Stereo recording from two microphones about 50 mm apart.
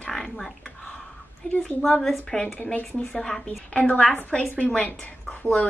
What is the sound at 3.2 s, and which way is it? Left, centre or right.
Speech, centre.